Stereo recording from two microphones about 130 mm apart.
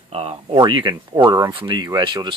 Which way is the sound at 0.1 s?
50° right (ahead or behind).